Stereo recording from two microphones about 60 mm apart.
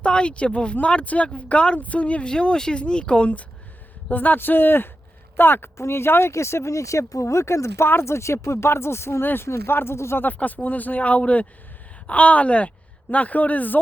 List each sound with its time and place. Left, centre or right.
0.0 s speech: centre; by 9.2 s left
9.2 s speech: left
10.2 s speech: left